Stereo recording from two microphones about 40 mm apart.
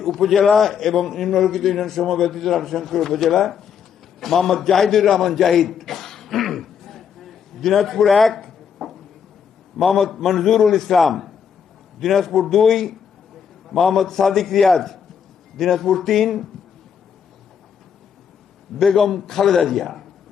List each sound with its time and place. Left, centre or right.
0.0 s a man's voice: centre
18.9 s a man's voice: centre